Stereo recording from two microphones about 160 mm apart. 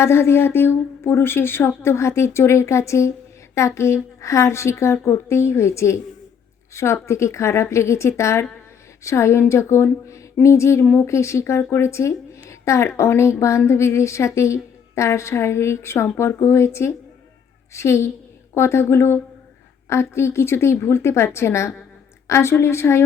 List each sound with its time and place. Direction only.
0.0 s a woman's voice: 15° left (ahead or behind)
12.5 s a sound: 20° left (ahead or behind)
13.0 s a woman's voice: 15° left (ahead or behind)